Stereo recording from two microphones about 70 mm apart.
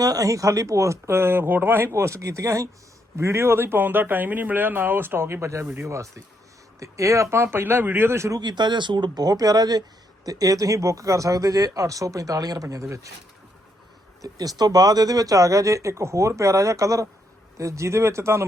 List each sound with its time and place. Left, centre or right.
0.0 s speech: right
3.2 s a man's voice: right
8.4 s speech: right
12.6 s speech: right
14.2 s speech: right